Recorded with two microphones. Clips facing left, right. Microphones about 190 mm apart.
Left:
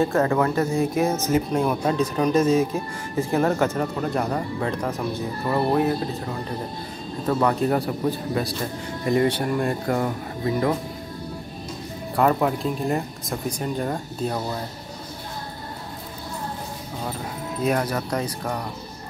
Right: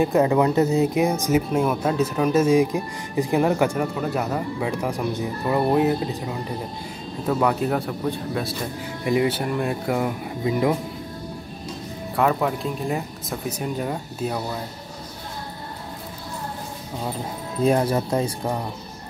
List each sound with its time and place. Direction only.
0.0 s speech: 15° right (ahead or behind)
7.2 s speech: 5° right (ahead or behind)
12.2 s speech: centre (ahead or behind)
17.6 s speech: 25° right (ahead or behind)